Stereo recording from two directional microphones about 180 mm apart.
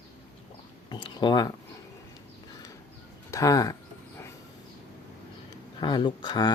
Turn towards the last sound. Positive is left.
turn(degrees=25)  # may be behind; listen again after turning